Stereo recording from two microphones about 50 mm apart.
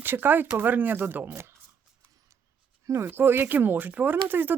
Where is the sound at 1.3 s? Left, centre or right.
Right.